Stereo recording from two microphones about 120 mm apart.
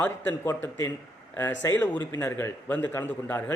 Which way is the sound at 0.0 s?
15° left (ahead or behind).